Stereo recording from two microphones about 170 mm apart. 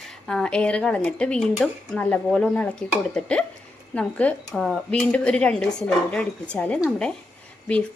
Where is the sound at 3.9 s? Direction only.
5° left (ahead or behind).